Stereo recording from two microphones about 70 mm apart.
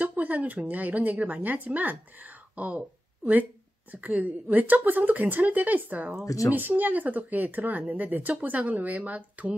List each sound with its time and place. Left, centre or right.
0.0 s speech: right
3.9 s speech: right
6.2 s speech: left
6.5 s speech: right